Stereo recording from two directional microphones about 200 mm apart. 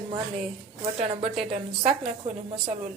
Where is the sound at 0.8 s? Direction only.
30° right (ahead or behind).